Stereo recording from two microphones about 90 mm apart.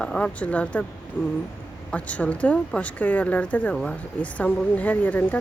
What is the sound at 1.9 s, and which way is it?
Speech, 15° left (ahead or behind).